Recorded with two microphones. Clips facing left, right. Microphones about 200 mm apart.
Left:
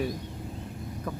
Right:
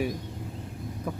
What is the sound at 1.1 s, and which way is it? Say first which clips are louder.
Speech: right 1 dB; 10° right (ahead or behind).